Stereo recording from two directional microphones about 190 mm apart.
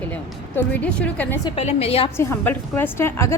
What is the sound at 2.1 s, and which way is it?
A woman's voice, 10° left (ahead or behind).